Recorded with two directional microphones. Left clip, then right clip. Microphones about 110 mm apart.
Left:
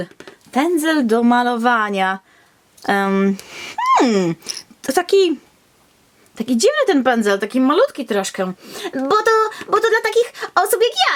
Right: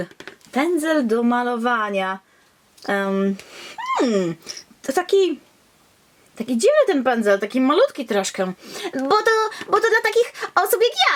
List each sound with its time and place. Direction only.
0.5 s speech: 15° left (ahead or behind)
0.9 s speech: 35° left (ahead or behind)
2.8 s speech: 35° left (ahead or behind)
6.3 s speech: 40° left (ahead or behind)
7.4 s speech: 10° left (ahead or behind)